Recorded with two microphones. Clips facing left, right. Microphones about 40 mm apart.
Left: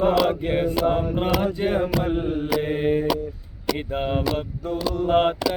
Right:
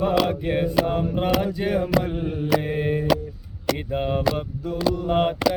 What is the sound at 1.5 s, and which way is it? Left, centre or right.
Mantra, left.